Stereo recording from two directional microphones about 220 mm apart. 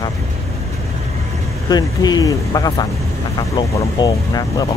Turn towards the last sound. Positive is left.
turn(degrees=15)  # may be behind; listen again after turning